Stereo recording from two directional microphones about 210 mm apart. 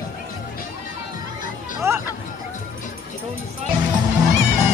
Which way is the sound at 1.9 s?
10° right (ahead or behind).